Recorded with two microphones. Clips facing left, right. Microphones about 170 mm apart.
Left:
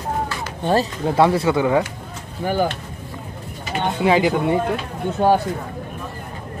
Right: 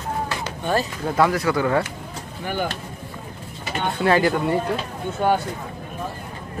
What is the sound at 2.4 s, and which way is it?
Speech, 35° left (ahead or behind).